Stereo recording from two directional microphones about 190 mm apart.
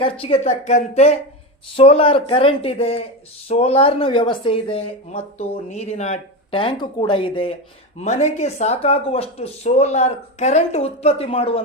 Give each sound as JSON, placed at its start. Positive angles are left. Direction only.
{"t": 0.0, "sound": "speech", "side_deg": 30}
{"t": 7.9, "sound": "speech", "side_deg": 40}